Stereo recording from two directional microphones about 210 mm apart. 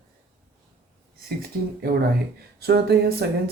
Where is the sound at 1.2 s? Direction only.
45° right (ahead or behind).